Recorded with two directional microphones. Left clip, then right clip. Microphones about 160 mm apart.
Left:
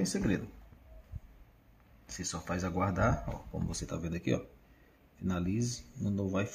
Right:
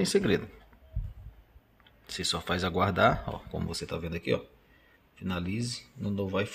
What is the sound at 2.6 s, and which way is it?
Speech, 30° right (ahead or behind).